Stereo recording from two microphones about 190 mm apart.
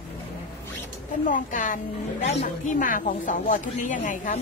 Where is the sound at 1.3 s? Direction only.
45° left (ahead or behind).